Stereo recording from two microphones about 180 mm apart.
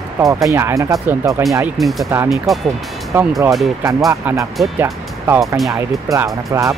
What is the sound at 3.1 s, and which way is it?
Speech, 15° right (ahead or behind).